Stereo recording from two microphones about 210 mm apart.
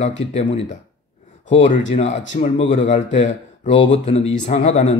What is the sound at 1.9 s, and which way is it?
Speech, 30° left (ahead or behind).